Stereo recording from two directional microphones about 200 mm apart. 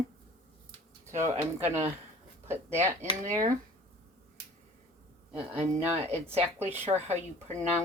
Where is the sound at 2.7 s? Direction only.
35° right (ahead or behind).